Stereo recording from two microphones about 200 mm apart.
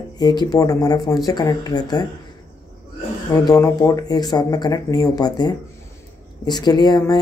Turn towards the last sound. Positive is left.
turn(degrees=20)  # may be behind; listen again after turning